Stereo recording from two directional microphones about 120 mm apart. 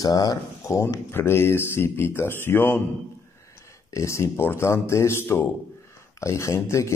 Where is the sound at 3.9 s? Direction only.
25° left (ahead or behind).